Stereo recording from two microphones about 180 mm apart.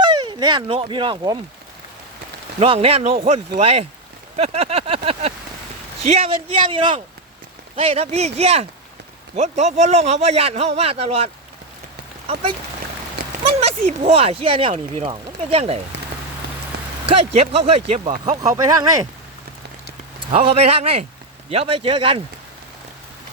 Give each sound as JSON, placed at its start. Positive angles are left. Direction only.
{"t": 0.0, "sound": "speech", "side_deg": -25}
{"t": 2.6, "sound": "a man's voice", "side_deg": -35}
{"t": 4.4, "sound": "vehicle", "side_deg": -35}
{"t": 6.0, "sound": "a man's voice", "side_deg": -35}
{"t": 12.3, "sound": "a man's voice", "side_deg": -35}
{"t": 17.1, "sound": "a man's voice", "side_deg": -35}
{"t": 18.3, "sound": "a man's voice", "side_deg": -20}
{"t": 20.3, "sound": "a man's voice", "side_deg": -35}